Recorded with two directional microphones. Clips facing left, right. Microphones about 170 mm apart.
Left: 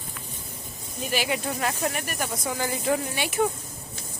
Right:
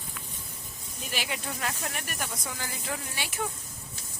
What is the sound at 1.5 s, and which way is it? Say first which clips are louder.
Speech: left 7 dB; 70° left (ahead or behind).